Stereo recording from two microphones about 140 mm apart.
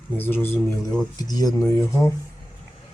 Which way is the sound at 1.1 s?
25° left (ahead or behind).